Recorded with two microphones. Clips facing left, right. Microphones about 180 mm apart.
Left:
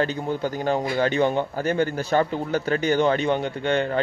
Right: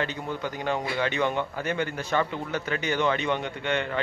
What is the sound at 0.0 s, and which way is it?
A man's voice, 35° left (ahead or behind).